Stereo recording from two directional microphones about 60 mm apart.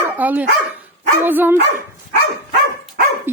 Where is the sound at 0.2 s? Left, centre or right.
Right.